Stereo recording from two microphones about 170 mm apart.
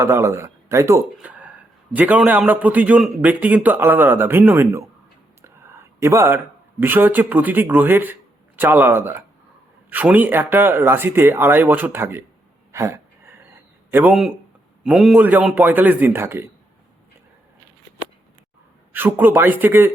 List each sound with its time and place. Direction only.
0.0 s a man's voice: 15° right (ahead or behind)
12.7 s a sound: 15° right (ahead or behind)
13.9 s a man's voice: 5° right (ahead or behind)
18.9 s a man's voice: 10° right (ahead or behind)